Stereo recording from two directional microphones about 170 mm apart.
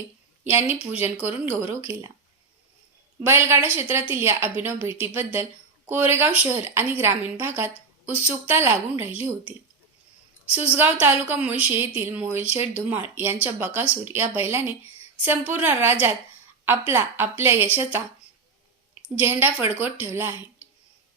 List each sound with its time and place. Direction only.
0.4 s a woman's voice: 10° right (ahead or behind)
3.2 s a woman's voice: 15° right (ahead or behind)
10.7 s a woman's voice: 10° right (ahead or behind)
19.0 s a woman's voice: 10° right (ahead or behind)